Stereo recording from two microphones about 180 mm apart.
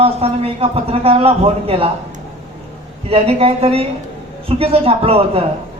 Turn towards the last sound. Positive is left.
turn(degrees=-35)  # may be behind; listen again after turning